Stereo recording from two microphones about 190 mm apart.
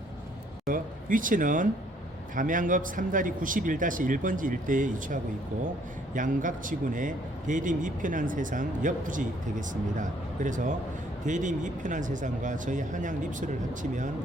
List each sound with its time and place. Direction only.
0.7 s speech: 45° right (ahead or behind)